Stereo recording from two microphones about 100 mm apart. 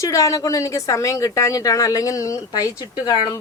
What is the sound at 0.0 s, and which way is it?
A woman's voice, 35° left (ahead or behind).